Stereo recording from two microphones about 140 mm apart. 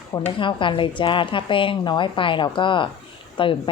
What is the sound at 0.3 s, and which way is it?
Speech, 35° left (ahead or behind).